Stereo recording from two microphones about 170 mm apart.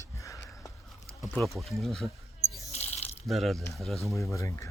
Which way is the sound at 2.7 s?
40° left (ahead or behind).